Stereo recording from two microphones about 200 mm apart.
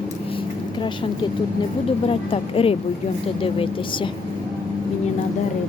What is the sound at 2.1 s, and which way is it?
Speech, 30° left (ahead or behind).